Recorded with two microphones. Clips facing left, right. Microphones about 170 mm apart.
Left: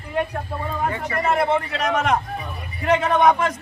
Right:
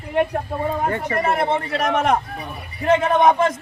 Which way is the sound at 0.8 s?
45° right (ahead or behind).